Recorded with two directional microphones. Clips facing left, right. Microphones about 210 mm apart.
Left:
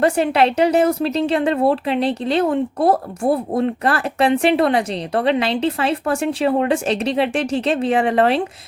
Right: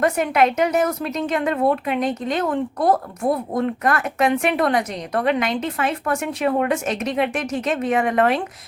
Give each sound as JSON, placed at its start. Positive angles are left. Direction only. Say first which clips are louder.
{"t": 0.0, "sound": "a woman's voice", "louder": "left 2 dB", "side_deg": 30}